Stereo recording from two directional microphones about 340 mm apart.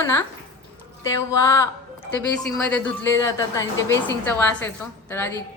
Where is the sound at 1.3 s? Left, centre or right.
Centre.